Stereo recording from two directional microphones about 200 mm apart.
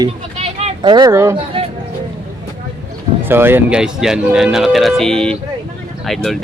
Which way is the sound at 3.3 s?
10° right (ahead or behind).